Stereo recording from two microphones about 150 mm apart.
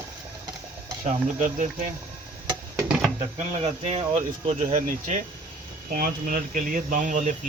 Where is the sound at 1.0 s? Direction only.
55° right (ahead or behind).